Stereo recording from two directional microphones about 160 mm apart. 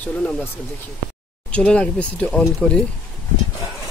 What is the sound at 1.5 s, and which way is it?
Speech, 5° left (ahead or behind).